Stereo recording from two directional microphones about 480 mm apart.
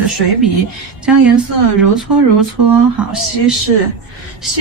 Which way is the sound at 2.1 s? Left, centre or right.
Right.